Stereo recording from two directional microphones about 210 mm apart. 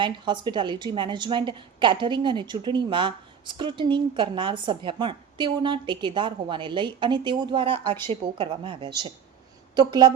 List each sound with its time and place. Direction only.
0.0 s a woman's voice: 20° right (ahead or behind)